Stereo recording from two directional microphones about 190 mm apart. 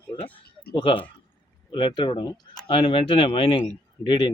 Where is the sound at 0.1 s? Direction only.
30° left (ahead or behind).